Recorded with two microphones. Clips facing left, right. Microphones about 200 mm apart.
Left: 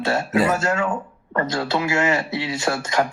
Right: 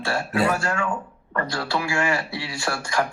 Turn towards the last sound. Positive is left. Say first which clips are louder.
# left 4 dB
turn(degrees=20)  # may be behind; listen again after turning